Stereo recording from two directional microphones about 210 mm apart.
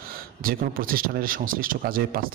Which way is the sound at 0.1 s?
45° right (ahead or behind).